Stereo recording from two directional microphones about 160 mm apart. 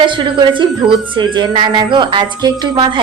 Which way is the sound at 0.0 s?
30° right (ahead or behind).